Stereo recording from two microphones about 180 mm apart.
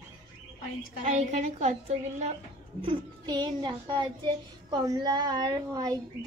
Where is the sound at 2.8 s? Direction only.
25° right (ahead or behind).